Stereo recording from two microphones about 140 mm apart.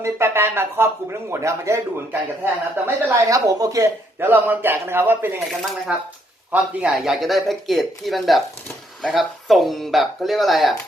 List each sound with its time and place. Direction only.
0.0 s speech: 20° right (ahead or behind)
6.5 s speech: 5° right (ahead or behind)